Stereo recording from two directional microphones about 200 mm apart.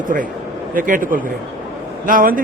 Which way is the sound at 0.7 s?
45° right (ahead or behind).